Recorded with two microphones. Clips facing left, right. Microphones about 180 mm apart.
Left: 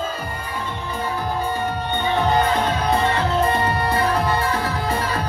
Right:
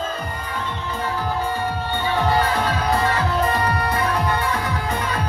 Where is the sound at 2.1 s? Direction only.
20° left (ahead or behind).